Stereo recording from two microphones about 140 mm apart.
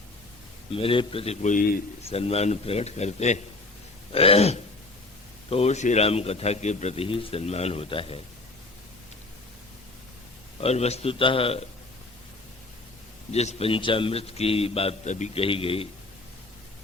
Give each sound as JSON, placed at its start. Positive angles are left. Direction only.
{"t": 0.7, "sound": "a man's voice", "side_deg": 40}
{"t": 2.0, "sound": "a man's voice", "side_deg": 45}
{"t": 4.1, "sound": "a man's voice", "side_deg": 45}
{"t": 10.6, "sound": "a man's voice", "side_deg": 50}
{"t": 13.3, "sound": "a man's voice", "side_deg": 50}
{"t": 15.1, "sound": "a man's voice", "side_deg": 55}
{"t": 15.4, "sound": "a man's voice", "side_deg": 40}